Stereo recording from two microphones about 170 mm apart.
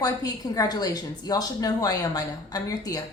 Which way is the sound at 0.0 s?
20° left (ahead or behind).